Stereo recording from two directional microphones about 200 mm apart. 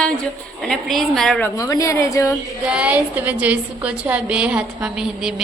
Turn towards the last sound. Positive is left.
turn(degrees=-5)  # may be behind; listen again after turning